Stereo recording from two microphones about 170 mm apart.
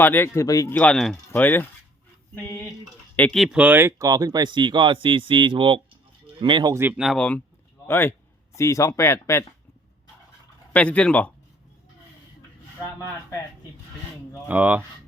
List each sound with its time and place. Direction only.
0.0 s speech: 10° left (ahead or behind)
0.8 s speech: 5° left (ahead or behind); by 6.8 s 25° right (ahead or behind)
6.8 s speech: 5° right (ahead or behind); by 9.4 s 15° left (ahead or behind)
10.7 s speech: 10° left (ahead or behind)
12.8 s speech: 15° left (ahead or behind)
14.4 s speech: 10° right (ahead or behind)